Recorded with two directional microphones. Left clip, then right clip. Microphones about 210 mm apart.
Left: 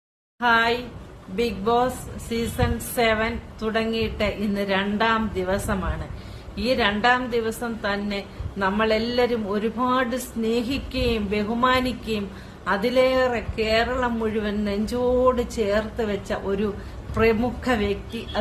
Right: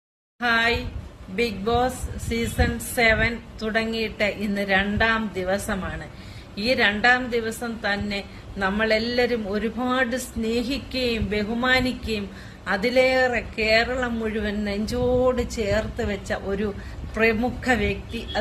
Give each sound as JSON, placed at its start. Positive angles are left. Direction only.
{"t": 0.3, "sound": "a woman's voice", "side_deg": 15}